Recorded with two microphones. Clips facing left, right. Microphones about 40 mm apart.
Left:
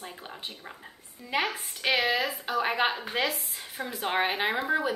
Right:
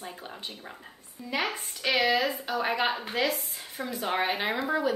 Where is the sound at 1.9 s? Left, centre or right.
Centre.